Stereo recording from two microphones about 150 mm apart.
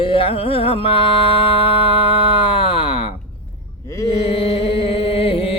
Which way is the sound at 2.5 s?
40° left (ahead or behind).